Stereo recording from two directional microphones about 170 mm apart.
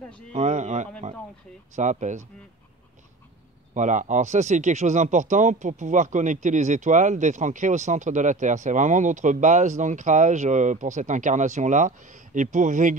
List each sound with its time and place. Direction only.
0.3 s speech: 45° right (ahead or behind)
3.7 s speech: 45° right (ahead or behind)